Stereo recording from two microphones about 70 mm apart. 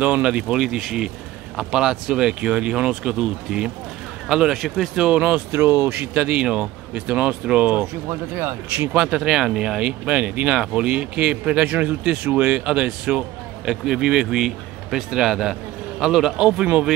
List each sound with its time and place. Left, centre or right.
0.0 s speech: centre
5.5 s speech: right
5.9 s speech: centre
7.8 s speech: right
8.9 s speech: centre